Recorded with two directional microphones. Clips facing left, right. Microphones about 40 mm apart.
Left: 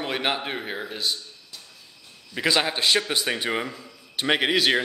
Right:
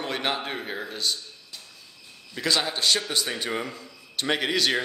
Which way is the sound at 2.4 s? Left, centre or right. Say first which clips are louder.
Left 3 dB; left.